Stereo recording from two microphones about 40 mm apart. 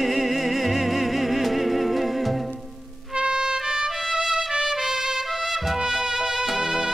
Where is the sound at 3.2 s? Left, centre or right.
Right.